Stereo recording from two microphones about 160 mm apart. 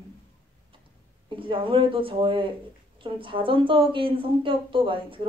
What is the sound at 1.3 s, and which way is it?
A woman's voice, 30° right (ahead or behind).